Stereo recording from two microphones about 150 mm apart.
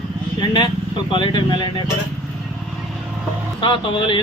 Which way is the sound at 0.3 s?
30° left (ahead or behind).